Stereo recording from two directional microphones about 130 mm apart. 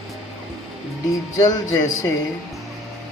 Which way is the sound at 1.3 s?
30° left (ahead or behind).